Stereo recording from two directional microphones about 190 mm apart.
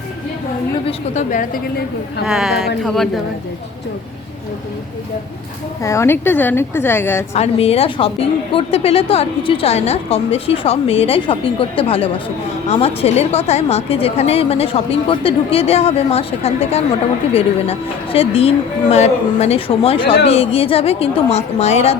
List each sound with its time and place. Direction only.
0.9 s a woman's voice: 40° left (ahead or behind)
2.2 s a woman's voice: centre (ahead or behind)
5.8 s a woman's voice: 15° left (ahead or behind)
7.3 s a woman's voice: 30° left (ahead or behind)